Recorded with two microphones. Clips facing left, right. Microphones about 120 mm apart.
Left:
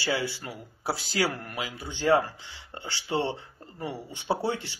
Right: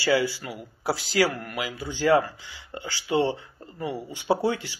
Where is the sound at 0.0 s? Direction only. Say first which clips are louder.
Right 6 dB; 25° left (ahead or behind).